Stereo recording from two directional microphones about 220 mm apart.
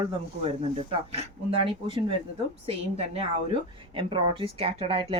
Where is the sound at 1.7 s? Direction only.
25° right (ahead or behind).